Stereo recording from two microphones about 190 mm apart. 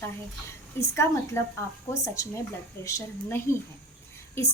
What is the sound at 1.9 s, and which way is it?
A woman's voice, 15° left (ahead or behind).